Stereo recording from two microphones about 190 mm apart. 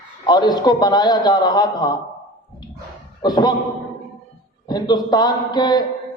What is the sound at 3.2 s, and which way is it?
Speech, 20° left (ahead or behind).